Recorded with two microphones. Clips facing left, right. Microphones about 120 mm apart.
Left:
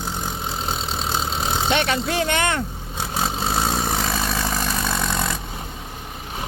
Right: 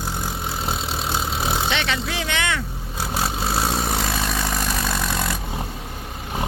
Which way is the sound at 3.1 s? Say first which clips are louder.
Left 1 dB; centre (ahead or behind).